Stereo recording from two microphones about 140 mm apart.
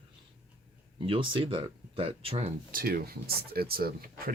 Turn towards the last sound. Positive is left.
turn(degrees=-90)